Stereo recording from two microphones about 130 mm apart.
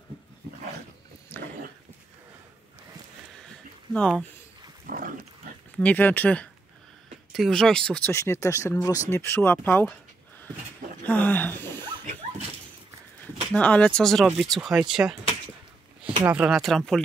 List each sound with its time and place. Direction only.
1.3 s dog: 15° left (ahead or behind)
3.9 s speech: 10° left (ahead or behind)
4.8 s pig: 90° right
5.8 s speech: 10° left (ahead or behind)
8.1 s speech: 20° left (ahead or behind)
11.1 s speech: 10° left (ahead or behind)
13.5 s speech: 10° left (ahead or behind); by 15.1 s 5° right (ahead or behind)
16.3 s speech: 10° right (ahead or behind)